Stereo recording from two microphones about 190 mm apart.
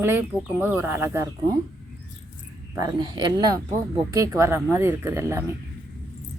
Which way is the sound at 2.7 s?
20° right (ahead or behind).